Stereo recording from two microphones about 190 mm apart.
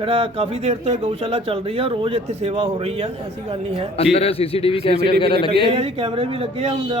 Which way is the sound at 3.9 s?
30° left (ahead or behind).